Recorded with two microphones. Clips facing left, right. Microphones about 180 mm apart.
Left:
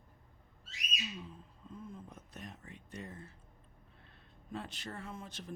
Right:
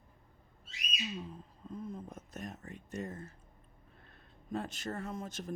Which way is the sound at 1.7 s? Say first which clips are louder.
Right 6 dB; 40° right (ahead or behind).